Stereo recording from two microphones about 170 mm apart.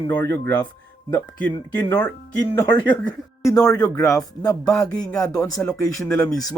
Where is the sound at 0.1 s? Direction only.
20° left (ahead or behind).